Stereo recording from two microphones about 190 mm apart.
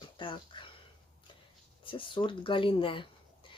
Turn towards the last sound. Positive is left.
turn(degrees=25)  # may be behind; listen again after turning